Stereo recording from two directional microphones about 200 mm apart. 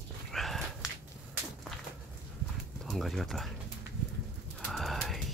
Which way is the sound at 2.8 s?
Centre (ahead or behind).